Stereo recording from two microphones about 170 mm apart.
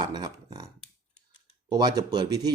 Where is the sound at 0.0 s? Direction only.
25° right (ahead or behind).